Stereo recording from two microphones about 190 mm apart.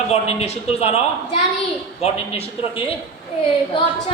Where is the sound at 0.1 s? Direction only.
35° left (ahead or behind).